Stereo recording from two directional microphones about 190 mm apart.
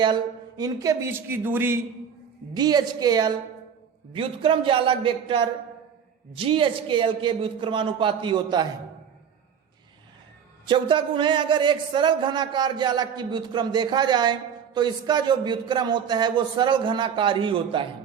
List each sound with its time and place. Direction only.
0.0 s speech: 20° right (ahead or behind)
2.5 s a man's voice: 20° right (ahead or behind)
10.7 s a man's voice: 25° right (ahead or behind)